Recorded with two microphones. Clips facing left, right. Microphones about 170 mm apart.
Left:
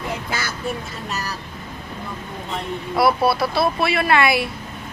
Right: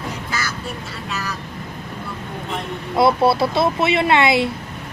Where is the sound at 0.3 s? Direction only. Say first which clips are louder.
Even; 55° left (ahead or behind).